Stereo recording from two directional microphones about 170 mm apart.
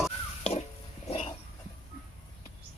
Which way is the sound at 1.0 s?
35° left (ahead or behind).